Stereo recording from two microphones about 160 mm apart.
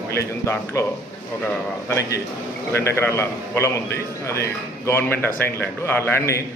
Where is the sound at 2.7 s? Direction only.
15° left (ahead or behind).